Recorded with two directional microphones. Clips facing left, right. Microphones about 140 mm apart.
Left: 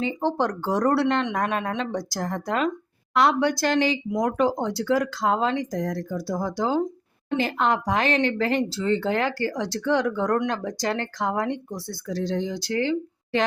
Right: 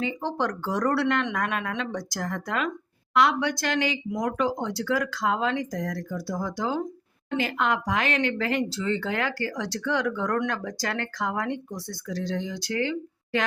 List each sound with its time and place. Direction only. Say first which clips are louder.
0.0 s speech: left 4 dB; 30° left (ahead or behind)